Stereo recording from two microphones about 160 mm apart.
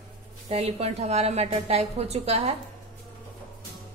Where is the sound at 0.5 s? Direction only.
40° right (ahead or behind).